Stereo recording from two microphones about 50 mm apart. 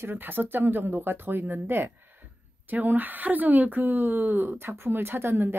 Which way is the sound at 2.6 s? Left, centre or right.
Right.